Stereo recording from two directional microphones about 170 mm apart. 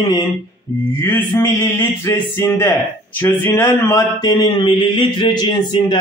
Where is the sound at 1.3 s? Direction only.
15° left (ahead or behind).